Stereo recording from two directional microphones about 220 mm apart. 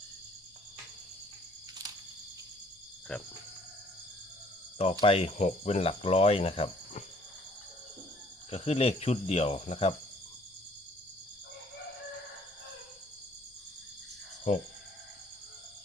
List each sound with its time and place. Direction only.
3.1 s speech: 5° left (ahead or behind)
4.8 s speech: 25° left (ahead or behind)
8.4 s speech: 30° left (ahead or behind)